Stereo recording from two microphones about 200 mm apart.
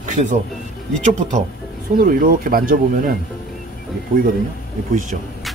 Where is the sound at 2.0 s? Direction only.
45° right (ahead or behind).